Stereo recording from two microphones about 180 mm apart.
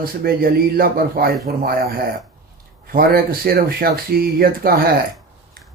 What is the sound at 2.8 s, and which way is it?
Speech, 55° right (ahead or behind).